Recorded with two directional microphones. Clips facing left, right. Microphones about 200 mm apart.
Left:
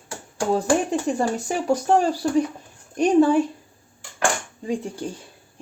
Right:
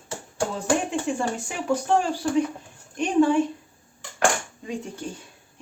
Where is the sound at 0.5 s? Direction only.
35° left (ahead or behind).